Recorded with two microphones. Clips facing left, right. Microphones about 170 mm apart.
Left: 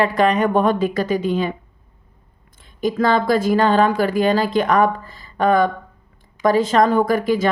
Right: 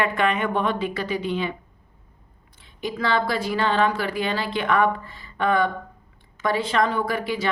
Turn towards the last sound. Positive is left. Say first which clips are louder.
# left 8 dB
turn(degrees=45)  # may be behind; listen again after turning